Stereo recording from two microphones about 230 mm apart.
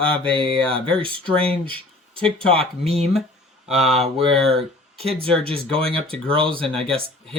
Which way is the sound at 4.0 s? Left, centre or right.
Right.